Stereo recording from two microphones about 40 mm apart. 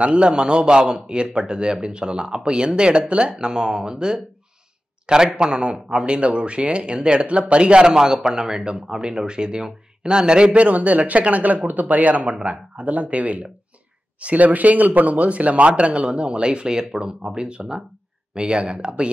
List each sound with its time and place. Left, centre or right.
0.0 s speech: right